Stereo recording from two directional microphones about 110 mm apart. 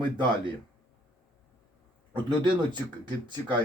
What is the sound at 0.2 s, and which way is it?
Speech, 45° right (ahead or behind).